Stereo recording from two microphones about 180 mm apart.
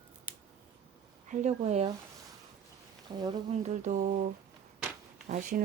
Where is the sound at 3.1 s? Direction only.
25° right (ahead or behind).